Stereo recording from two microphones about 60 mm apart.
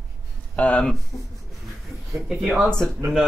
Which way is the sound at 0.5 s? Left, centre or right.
Left.